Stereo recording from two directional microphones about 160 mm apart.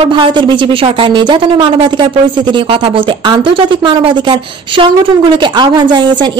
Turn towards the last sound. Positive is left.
turn(degrees=-30)  # may be behind; listen again after turning